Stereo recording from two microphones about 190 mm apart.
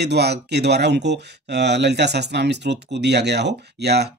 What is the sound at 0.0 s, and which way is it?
Speech, 60° right (ahead or behind).